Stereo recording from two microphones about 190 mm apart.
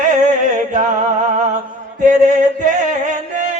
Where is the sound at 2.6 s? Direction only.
40° right (ahead or behind).